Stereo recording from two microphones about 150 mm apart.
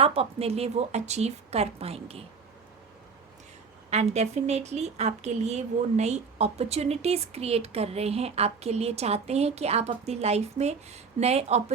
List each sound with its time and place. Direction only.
0.0 s a woman's voice: 40° right (ahead or behind)
3.8 s a woman's voice: 45° right (ahead or behind)